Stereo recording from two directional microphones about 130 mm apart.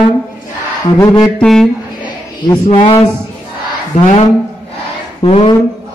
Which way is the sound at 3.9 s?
65° left (ahead or behind).